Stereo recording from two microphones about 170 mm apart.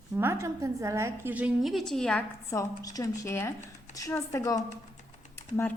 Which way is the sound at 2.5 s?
20° left (ahead or behind).